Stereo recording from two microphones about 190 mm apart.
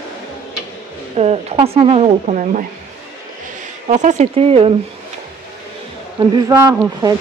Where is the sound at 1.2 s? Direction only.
30° right (ahead or behind).